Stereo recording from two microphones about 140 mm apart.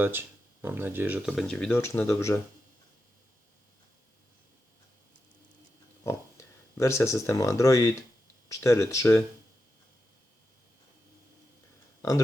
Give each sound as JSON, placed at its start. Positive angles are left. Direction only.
{"t": 0.0, "sound": "speech", "side_deg": -15}
{"t": 1.3, "sound": "speech", "side_deg": 5}
{"t": 1.7, "sound": "speech", "side_deg": 20}
{"t": 6.7, "sound": "speech", "side_deg": 20}